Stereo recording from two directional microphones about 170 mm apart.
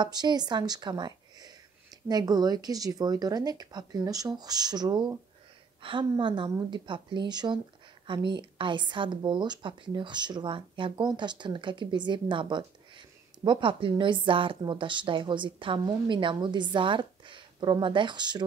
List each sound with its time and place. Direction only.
0.0 s a woman's voice: 25° right (ahead or behind)